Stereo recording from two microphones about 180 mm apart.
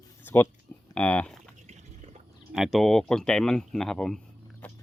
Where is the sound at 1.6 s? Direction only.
40° right (ahead or behind).